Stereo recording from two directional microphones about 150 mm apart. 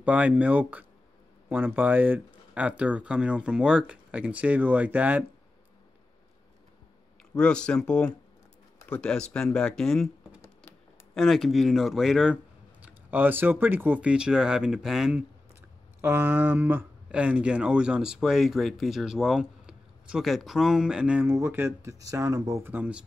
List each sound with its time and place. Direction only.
0.0 s speech: 10° right (ahead or behind)
7.3 s speech: 5° left (ahead or behind)
11.1 s speech: centre (ahead or behind)
16.0 s speech: 15° right (ahead or behind)